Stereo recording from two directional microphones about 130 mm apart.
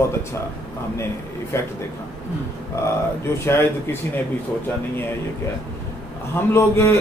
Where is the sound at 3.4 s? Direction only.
20° left (ahead or behind).